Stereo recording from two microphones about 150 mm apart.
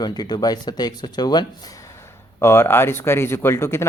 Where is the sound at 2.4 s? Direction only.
15° left (ahead or behind).